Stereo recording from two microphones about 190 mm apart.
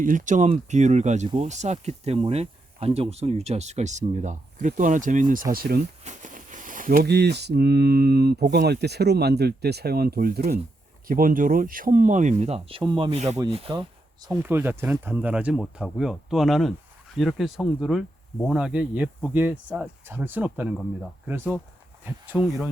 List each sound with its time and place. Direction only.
0.0 s speech: 45° right (ahead or behind)
6.1 s speech: 40° right (ahead or behind)
13.2 s speech: 15° right (ahead or behind)
13.5 s speech: 30° right (ahead or behind); by 22.7 s centre (ahead or behind)